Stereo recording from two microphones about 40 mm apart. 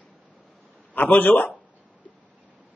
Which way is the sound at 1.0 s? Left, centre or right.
Left.